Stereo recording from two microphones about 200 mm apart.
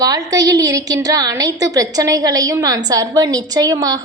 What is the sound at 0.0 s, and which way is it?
A woman's voice, 20° right (ahead or behind).